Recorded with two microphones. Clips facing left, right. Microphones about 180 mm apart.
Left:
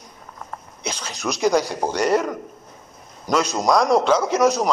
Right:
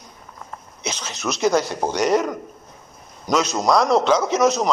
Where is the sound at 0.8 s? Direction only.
10° left (ahead or behind).